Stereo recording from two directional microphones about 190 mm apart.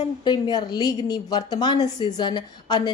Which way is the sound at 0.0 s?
20° left (ahead or behind).